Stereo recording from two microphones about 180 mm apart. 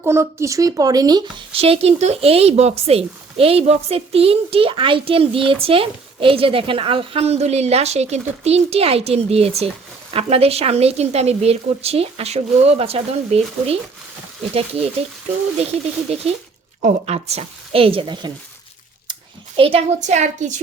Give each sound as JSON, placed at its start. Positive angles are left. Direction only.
{"t": 0.0, "sound": "speech", "side_deg": -15}
{"t": 15.6, "sound": "speech", "side_deg": -35}
{"t": 19.5, "sound": "speech", "side_deg": -30}